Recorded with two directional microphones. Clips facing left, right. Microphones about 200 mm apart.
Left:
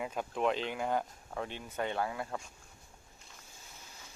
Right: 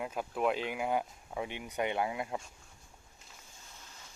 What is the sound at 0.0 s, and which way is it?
Speech, 5° right (ahead or behind).